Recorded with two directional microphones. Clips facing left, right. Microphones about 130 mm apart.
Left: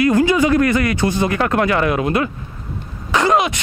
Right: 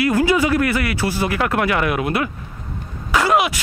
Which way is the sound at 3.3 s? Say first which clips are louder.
Left 1 dB; 5° right (ahead or behind).